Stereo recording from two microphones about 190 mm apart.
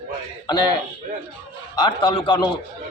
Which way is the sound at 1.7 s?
25° left (ahead or behind).